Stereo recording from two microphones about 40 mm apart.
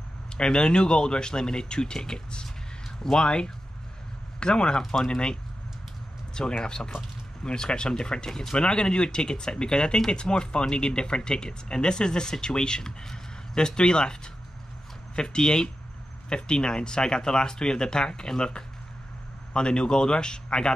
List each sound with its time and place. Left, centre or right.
0.4 s speech: left